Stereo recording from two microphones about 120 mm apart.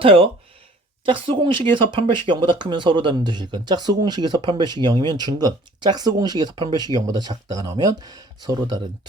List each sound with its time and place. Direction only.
0.0 s speech: 50° right (ahead or behind)